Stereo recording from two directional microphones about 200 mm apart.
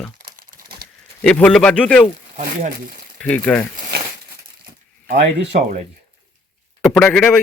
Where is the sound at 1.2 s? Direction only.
5° left (ahead or behind).